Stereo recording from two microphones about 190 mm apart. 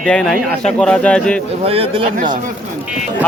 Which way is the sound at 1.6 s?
30° right (ahead or behind).